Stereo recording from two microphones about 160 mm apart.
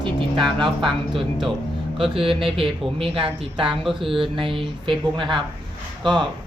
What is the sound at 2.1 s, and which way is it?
Speech, 35° right (ahead or behind).